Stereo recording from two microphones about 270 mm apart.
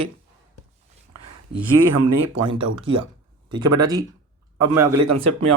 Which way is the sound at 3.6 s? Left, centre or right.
Right.